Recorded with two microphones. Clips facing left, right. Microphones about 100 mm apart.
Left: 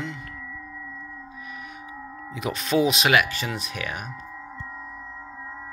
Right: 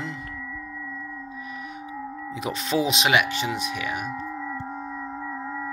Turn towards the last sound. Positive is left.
turn(degrees=-65)  # may be behind; listen again after turning